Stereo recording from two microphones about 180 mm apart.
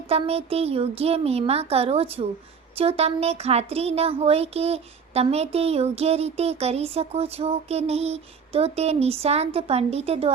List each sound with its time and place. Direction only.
0.1 s speech: 35° right (ahead or behind)